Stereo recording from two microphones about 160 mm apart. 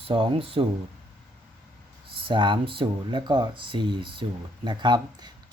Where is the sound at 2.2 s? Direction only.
30° right (ahead or behind).